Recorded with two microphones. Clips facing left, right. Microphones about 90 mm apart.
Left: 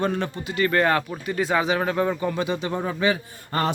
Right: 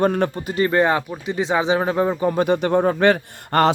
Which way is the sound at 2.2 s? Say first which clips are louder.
Right 7 dB; 45° right (ahead or behind).